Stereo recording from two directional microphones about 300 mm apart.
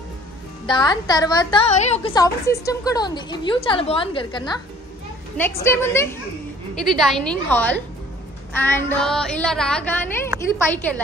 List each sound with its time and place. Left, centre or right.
0.7 s a woman's voice: centre